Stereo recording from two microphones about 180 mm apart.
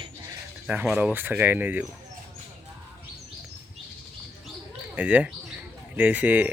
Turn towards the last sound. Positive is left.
turn(degrees=-10)  # may be behind; listen again after turning